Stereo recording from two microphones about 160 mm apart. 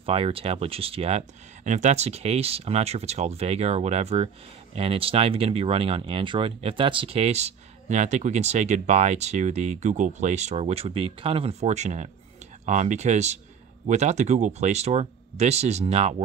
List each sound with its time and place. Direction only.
0.0 s speech: 35° right (ahead or behind)